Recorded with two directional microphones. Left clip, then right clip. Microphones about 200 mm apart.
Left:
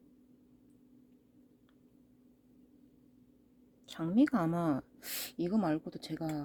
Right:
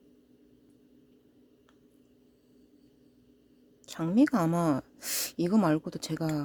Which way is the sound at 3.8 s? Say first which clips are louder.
Right 4 dB; 15° right (ahead or behind).